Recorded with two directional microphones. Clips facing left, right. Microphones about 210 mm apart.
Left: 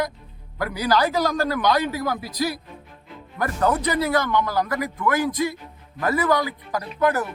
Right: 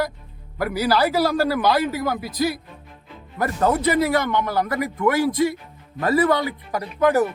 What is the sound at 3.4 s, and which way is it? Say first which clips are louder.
A man's voice: right 2 dB; 25° right (ahead or behind).